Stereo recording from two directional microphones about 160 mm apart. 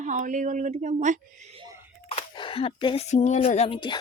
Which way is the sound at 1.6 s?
20° right (ahead or behind).